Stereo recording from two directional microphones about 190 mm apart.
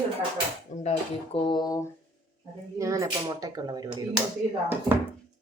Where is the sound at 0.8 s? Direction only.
35° left (ahead or behind).